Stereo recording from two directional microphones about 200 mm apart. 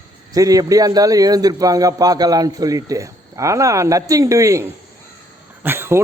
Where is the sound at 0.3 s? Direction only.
15° right (ahead or behind).